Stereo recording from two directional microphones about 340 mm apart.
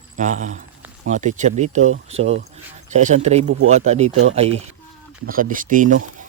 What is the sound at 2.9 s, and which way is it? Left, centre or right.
Speech, right.